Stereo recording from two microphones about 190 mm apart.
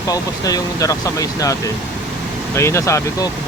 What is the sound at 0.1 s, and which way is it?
Speech, 20° left (ahead or behind).